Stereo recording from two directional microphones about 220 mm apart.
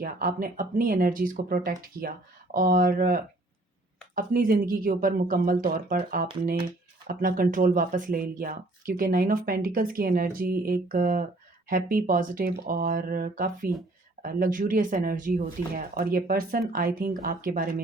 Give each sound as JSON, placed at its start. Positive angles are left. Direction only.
{"t": 0.0, "sound": "speech", "side_deg": -40}
{"t": 7.1, "sound": "speech", "side_deg": -40}